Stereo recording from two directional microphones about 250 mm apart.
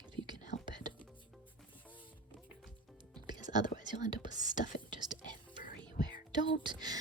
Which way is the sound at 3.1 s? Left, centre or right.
Centre.